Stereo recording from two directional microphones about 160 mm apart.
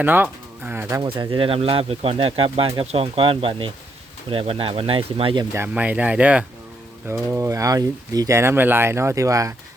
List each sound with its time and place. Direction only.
0.0 s speech: 10° right (ahead or behind)
1.0 s speech: 30° right (ahead or behind)
5.5 s speech: 10° right (ahead or behind)
7.1 s speech: 20° right (ahead or behind)